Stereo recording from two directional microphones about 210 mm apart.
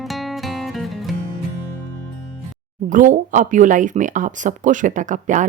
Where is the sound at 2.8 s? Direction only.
40° right (ahead or behind).